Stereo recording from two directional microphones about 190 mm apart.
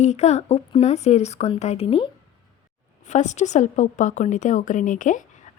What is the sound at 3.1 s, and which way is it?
Speech, 40° left (ahead or behind).